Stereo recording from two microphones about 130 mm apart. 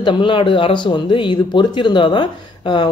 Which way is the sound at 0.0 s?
40° left (ahead or behind).